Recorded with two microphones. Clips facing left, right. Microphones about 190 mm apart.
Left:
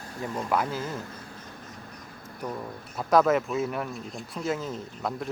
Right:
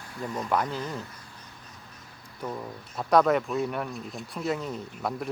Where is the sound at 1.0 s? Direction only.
50° left (ahead or behind).